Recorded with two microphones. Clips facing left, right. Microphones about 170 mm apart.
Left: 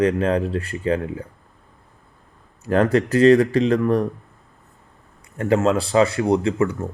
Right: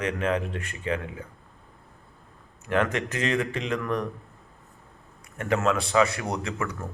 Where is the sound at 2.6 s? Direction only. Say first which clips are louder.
Left 8 dB; 35° left (ahead or behind).